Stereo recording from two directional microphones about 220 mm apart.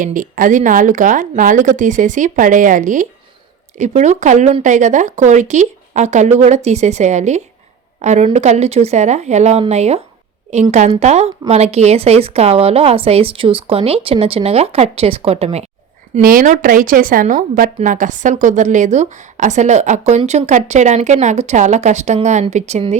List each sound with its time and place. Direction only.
0.0 s a woman's voice: 35° right (ahead or behind)
16.1 s a woman's voice: 40° right (ahead or behind)